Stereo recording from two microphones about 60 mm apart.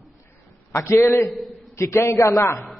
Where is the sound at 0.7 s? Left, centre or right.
Left.